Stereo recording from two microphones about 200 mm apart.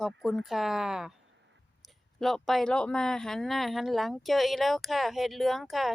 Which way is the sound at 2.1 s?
Centre (ahead or behind).